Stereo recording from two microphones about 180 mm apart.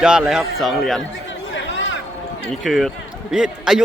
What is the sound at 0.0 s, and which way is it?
A man's voice, 5° right (ahead or behind).